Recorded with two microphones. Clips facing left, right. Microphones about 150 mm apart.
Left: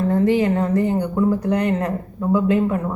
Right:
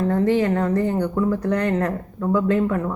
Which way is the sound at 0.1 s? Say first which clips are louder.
Left 3 dB; 15° left (ahead or behind).